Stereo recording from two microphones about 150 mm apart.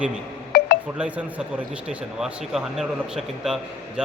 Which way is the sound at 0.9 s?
10° right (ahead or behind).